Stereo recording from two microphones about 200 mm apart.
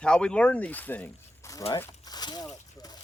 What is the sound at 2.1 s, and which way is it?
Slosh, 20° left (ahead or behind).